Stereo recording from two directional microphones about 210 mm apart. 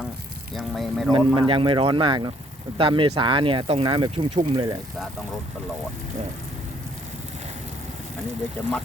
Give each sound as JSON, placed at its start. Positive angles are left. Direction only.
{"t": 0.5, "sound": "speech", "side_deg": 0}
{"t": 1.1, "sound": "speech", "side_deg": -25}